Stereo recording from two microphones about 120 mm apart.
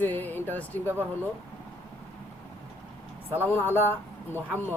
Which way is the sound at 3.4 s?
20° left (ahead or behind).